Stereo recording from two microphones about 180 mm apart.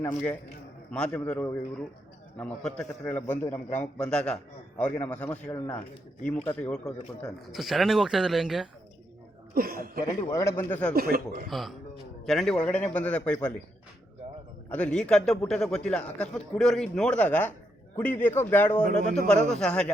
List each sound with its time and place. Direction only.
0.0 s a man's voice: 10° left (ahead or behind)
9.6 s speech: 55° right (ahead or behind)
10.2 s a man's voice: 20° left (ahead or behind)
10.9 s speech: 55° right (ahead or behind)
11.4 s a man's voice: centre (ahead or behind)
14.7 s a man's voice: 5° left (ahead or behind)